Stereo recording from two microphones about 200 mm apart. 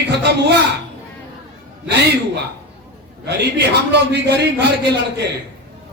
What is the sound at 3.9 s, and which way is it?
A man's voice, 55° right (ahead or behind).